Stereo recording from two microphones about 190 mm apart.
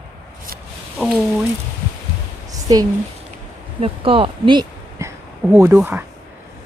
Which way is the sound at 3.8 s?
30° right (ahead or behind).